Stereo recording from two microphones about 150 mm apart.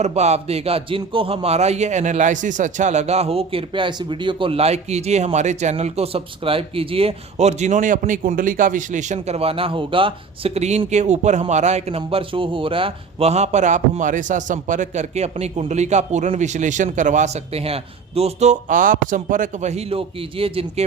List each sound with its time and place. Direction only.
0.0 s speech: 50° right (ahead or behind)